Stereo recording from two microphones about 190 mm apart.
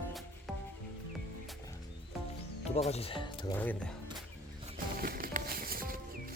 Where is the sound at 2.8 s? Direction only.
30° left (ahead or behind).